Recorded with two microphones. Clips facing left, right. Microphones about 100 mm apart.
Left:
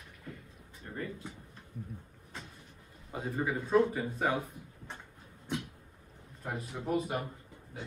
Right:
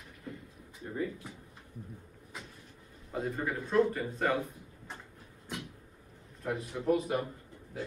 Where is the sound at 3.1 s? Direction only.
5° left (ahead or behind).